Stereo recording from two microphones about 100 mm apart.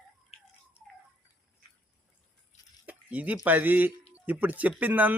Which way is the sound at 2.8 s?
15° right (ahead or behind).